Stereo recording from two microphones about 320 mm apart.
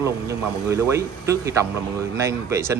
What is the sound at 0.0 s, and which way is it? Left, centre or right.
A man's voice, centre.